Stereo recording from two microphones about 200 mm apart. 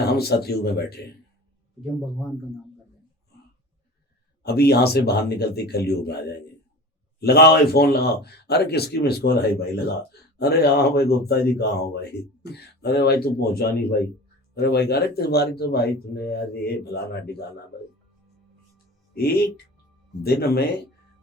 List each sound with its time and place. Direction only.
0.1 s speech: 50° left (ahead or behind)
4.4 s speech: 50° left (ahead or behind)
19.1 s speech: 50° left (ahead or behind)